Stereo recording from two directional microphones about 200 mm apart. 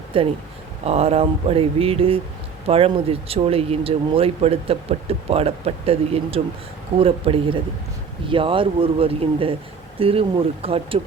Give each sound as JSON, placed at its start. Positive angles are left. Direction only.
{"t": 0.1, "sound": "speech", "side_deg": -25}